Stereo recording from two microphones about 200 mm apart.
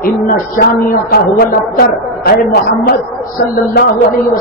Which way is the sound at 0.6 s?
45° left (ahead or behind).